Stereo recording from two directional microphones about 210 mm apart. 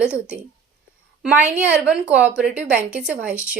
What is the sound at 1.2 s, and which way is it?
A woman's voice, 5° right (ahead or behind).